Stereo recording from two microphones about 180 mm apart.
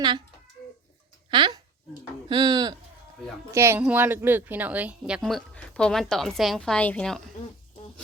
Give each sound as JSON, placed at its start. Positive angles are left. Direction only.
{"t": 1.3, "sound": "a woman's voice", "side_deg": -25}